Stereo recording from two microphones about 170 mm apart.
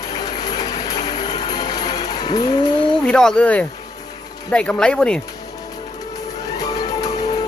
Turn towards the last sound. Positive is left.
turn(degrees=20)  # may be behind; listen again after turning